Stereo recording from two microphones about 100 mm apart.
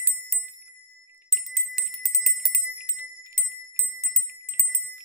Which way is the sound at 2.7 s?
15° right (ahead or behind).